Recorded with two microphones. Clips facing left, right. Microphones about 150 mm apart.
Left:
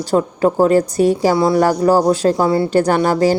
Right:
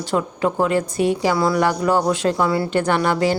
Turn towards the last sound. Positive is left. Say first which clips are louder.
# left 4 dB
turn(degrees=40)  # may be behind; listen again after turning